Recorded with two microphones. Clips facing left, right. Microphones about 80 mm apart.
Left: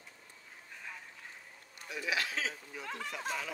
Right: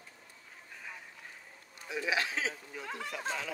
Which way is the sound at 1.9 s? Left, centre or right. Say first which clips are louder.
Right 3 dB; right.